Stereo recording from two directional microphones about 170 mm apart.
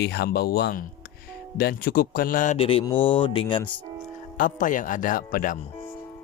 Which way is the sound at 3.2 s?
30° left (ahead or behind).